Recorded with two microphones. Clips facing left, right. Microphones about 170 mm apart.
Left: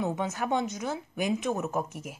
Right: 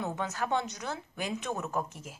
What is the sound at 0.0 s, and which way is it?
Speech, 15° left (ahead or behind).